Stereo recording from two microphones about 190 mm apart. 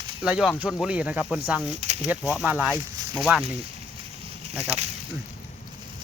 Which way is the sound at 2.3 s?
5° right (ahead or behind).